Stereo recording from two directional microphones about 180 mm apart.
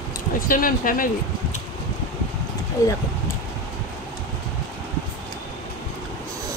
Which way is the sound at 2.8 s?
15° left (ahead or behind).